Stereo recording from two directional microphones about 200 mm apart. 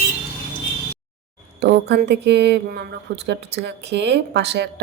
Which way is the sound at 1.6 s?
55° right (ahead or behind).